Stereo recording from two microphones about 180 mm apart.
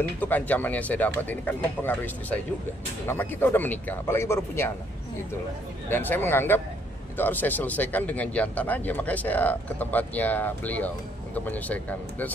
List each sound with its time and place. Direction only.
0.2 s speech: 10° left (ahead or behind)
5.9 s speech: 10° left (ahead or behind)